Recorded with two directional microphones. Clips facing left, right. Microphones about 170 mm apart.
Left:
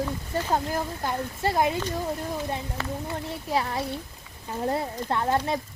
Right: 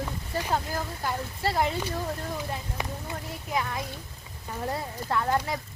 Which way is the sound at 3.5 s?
35° left (ahead or behind).